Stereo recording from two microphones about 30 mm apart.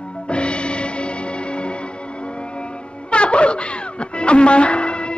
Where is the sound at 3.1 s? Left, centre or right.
Left.